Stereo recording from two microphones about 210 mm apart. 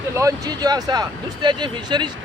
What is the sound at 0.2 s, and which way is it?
Speech, 15° right (ahead or behind).